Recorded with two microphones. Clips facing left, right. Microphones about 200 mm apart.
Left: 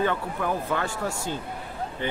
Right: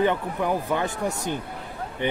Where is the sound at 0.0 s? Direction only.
15° right (ahead or behind).